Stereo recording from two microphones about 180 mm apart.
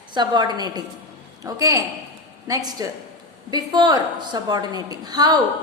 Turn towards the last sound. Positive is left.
turn(degrees=-20)  # may be behind; listen again after turning